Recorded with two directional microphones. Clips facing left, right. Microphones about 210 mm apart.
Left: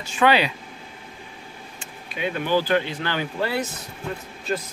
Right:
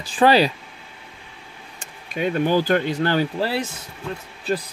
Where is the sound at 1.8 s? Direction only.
45° right (ahead or behind).